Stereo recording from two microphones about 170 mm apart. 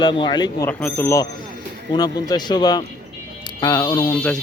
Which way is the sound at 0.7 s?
10° left (ahead or behind).